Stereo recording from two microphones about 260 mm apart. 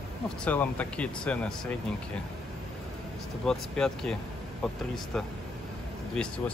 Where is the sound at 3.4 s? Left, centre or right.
Centre.